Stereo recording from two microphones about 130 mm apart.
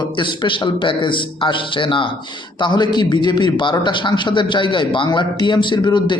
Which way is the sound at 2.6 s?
35° left (ahead or behind).